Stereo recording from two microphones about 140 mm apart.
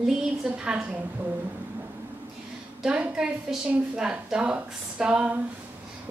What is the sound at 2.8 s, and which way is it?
A woman's voice, 10° right (ahead or behind).